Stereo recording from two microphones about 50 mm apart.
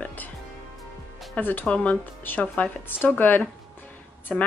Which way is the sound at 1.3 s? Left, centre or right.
Left.